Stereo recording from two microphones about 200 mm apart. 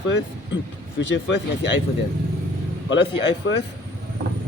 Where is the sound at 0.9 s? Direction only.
60° left (ahead or behind).